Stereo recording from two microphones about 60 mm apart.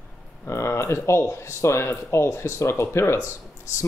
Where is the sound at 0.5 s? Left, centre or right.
Left.